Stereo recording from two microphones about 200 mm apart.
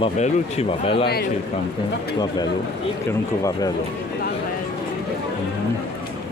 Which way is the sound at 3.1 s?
15° left (ahead or behind).